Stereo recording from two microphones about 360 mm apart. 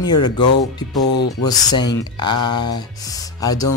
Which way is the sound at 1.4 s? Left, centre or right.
Centre.